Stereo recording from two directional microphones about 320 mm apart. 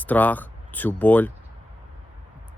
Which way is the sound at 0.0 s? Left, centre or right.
Centre.